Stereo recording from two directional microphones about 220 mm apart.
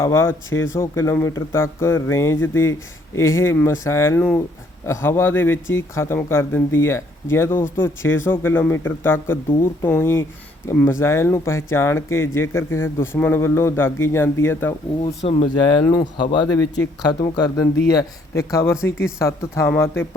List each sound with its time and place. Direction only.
0.0 s speech: 10° left (ahead or behind)
15.2 s speech: 30° left (ahead or behind); by 20.1 s 10° left (ahead or behind)